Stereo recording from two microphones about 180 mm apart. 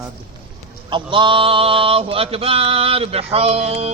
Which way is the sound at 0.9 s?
25° right (ahead or behind).